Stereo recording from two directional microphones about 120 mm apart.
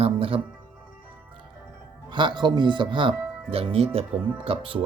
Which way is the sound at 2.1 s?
40° right (ahead or behind).